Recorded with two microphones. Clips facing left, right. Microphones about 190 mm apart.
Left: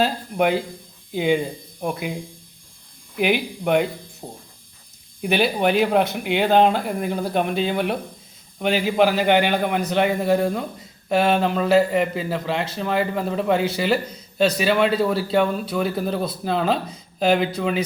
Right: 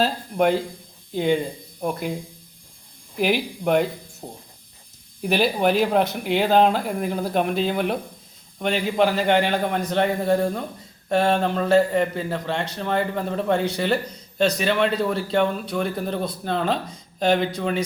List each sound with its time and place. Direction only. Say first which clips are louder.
0.0 s speech: even; 5° left (ahead or behind)
3.2 s speech: left 1 dB; centre (ahead or behind)